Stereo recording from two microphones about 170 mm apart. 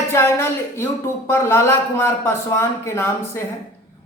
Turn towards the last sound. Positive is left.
turn(degrees=15)  # may be behind; listen again after turning